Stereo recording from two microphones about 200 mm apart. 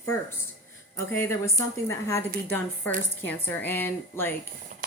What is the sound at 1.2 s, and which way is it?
A woman's voice, 15° left (ahead or behind).